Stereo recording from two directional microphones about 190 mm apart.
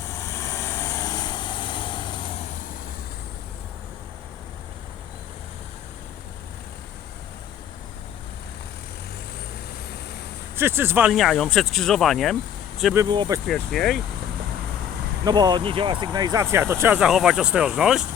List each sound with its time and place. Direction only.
0.1 s vehicle: 15° left (ahead or behind)
10.6 s speech: 10° right (ahead or behind)
12.9 s speech: 20° right (ahead or behind)
13.5 s speech: centre (ahead or behind)
15.2 s speech: 20° right (ahead or behind)
17.0 s speech: 5° right (ahead or behind)